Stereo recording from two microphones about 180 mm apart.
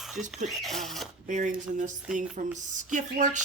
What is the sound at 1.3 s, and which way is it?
A man's voice, 45° right (ahead or behind).